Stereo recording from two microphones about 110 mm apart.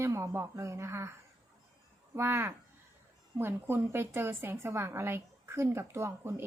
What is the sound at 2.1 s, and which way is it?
A woman's voice, 20° right (ahead or behind).